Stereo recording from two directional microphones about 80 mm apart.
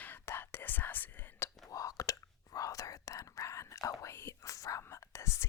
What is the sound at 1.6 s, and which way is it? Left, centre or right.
Whispering, left.